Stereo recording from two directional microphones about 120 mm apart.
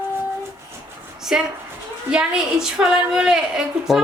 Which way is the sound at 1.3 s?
5° right (ahead or behind).